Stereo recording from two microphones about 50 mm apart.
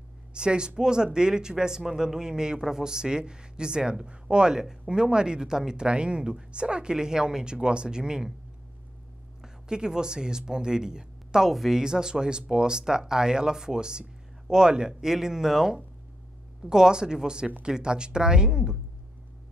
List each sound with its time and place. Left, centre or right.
0.3 s speech: centre
9.4 s speech: centre
11.8 s speech: centre